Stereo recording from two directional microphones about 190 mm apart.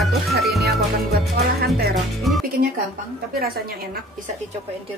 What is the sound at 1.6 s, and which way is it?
Music, 55° right (ahead or behind).